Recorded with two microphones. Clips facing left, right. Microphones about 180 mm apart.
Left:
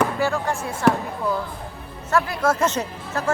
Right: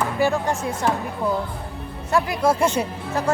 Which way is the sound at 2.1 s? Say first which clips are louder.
Right 1 dB; 15° right (ahead or behind).